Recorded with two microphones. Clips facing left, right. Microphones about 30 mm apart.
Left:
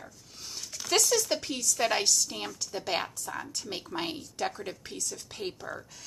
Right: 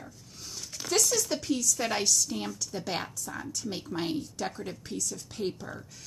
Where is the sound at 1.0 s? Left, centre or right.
Left.